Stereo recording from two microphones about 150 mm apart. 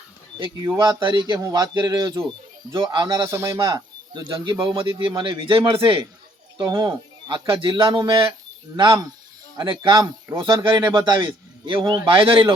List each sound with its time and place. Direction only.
0.3 s speech: 30° right (ahead or behind)
3.2 s speech: 20° right (ahead or behind); by 6.1 s 35° right (ahead or behind)
6.6 s speech: 25° right (ahead or behind)